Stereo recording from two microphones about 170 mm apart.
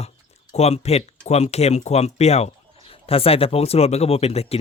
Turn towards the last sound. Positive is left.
turn(degrees=35)  # may be behind; listen again after turning